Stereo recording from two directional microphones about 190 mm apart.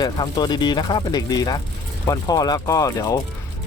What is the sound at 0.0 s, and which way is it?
Speech, 20° left (ahead or behind).